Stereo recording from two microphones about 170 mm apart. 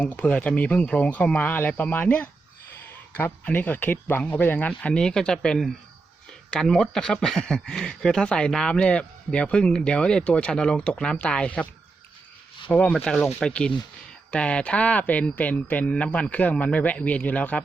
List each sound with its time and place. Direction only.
0.0 s speech: 10° left (ahead or behind)
12.7 s speech: 5° left (ahead or behind)